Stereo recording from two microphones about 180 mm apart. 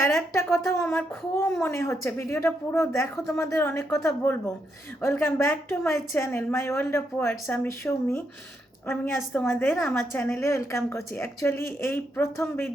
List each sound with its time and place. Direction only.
0.0 s a woman's voice: 15° left (ahead or behind)